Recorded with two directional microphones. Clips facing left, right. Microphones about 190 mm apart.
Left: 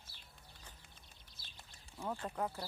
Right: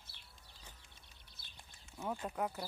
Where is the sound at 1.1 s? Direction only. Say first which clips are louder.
Left 1 dB; 60° right (ahead or behind).